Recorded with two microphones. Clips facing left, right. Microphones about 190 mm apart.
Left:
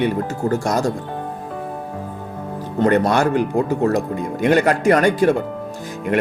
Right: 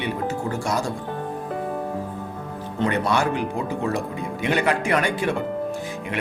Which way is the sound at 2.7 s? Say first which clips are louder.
Left 6 dB; 45° left (ahead or behind).